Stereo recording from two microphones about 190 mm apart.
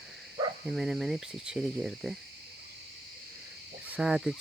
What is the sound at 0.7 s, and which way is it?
Speech, centre (ahead or behind).